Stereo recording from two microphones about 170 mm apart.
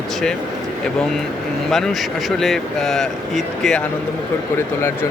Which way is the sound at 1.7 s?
Centre (ahead or behind).